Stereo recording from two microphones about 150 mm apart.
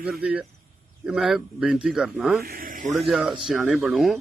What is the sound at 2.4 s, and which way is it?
Speech, 75° right (ahead or behind).